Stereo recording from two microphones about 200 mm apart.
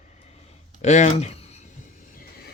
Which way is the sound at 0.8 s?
35° left (ahead or behind).